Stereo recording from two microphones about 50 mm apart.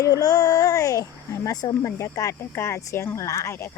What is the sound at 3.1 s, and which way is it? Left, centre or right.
Speech, left.